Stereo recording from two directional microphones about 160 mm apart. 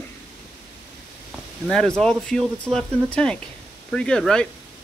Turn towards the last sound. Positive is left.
turn(degrees=5)  # may be behind; listen again after turning